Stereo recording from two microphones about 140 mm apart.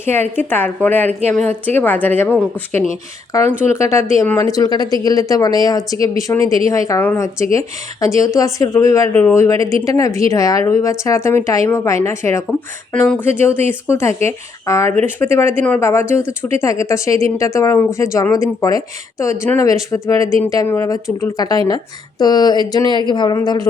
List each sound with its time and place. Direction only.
0.0 s speech: 15° left (ahead or behind)
3.7 s speech: 20° left (ahead or behind)
12.5 s speech: 5° left (ahead or behind); by 23.6 s 30° left (ahead or behind)